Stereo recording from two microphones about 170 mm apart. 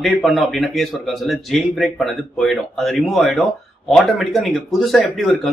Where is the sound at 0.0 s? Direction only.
Centre (ahead or behind).